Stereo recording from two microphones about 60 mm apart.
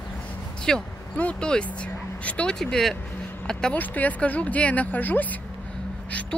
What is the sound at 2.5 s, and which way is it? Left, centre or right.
Speech, centre.